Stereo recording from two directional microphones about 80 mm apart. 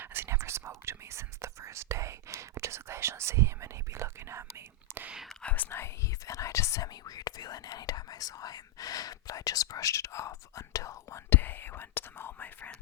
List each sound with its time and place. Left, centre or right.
0.0 s whispering: right
5.1 s whispering: centre
5.4 s whispering: centre
6.1 s whispering: left
6.8 s whispering: left
11.3 s whispering: left